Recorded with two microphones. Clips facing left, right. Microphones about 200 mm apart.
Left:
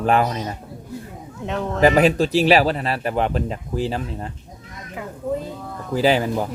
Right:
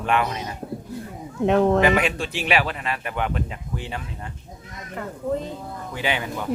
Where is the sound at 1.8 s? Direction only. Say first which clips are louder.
Left 5 dB; 35° left (ahead or behind).